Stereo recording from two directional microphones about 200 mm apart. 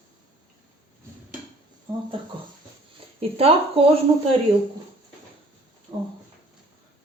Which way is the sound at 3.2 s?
30° right (ahead or behind).